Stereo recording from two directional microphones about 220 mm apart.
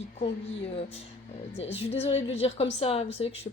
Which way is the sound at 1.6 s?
30° left (ahead or behind).